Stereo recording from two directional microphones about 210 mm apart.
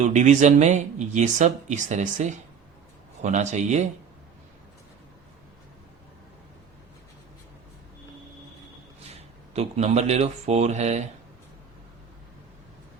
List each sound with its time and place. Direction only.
0.0 s speech: 35° right (ahead or behind)
9.0 s speech: 30° right (ahead or behind)